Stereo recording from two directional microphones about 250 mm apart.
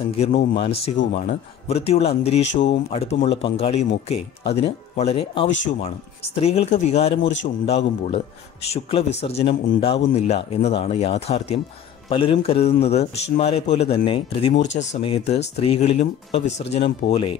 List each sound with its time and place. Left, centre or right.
0.1 s a man's voice: left